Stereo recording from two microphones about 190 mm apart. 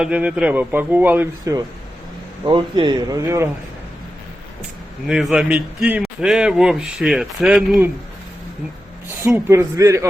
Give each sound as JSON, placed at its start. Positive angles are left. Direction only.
{"t": 0.0, "sound": "speech", "side_deg": -5}
{"t": 2.5, "sound": "speech", "side_deg": -25}
{"t": 5.0, "sound": "a man's voice", "side_deg": -5}
{"t": 9.0, "sound": "speech", "side_deg": -15}